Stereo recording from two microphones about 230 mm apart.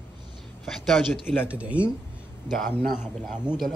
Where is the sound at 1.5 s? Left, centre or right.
Centre.